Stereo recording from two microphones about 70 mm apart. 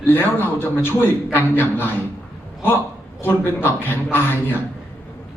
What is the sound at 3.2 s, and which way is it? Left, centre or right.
A man's voice, left.